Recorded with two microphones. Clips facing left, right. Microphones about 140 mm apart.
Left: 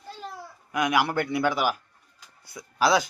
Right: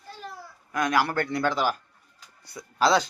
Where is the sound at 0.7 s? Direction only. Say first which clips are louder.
Left 1 dB; 15° left (ahead or behind).